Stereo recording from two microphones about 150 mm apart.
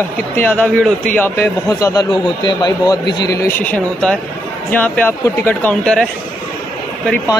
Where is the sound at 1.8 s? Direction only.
25° left (ahead or behind); by 6.0 s 10° left (ahead or behind).